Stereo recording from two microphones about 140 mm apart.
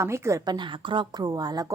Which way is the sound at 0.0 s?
20° right (ahead or behind).